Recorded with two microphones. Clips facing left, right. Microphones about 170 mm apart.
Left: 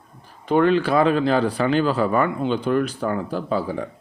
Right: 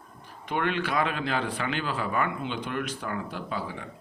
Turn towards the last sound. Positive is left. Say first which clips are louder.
# left 10 dB
turn(degrees=35)  # may be behind; listen again after turning